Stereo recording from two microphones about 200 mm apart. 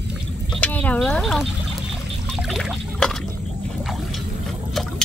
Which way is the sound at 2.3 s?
Centre (ahead or behind).